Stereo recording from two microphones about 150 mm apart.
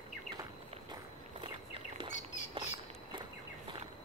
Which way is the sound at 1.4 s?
35° right (ahead or behind).